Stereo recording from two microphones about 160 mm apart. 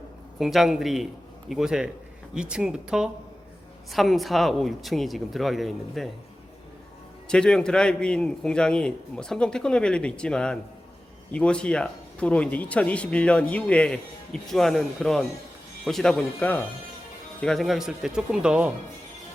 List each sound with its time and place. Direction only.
0.3 s a man's voice: centre (ahead or behind)
7.3 s a man's voice: 5° left (ahead or behind)